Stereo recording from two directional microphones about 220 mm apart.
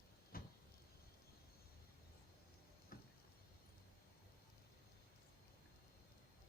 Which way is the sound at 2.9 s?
40° left (ahead or behind).